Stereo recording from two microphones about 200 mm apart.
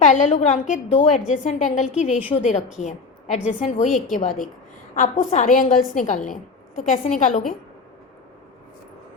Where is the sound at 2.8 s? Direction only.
35° left (ahead or behind).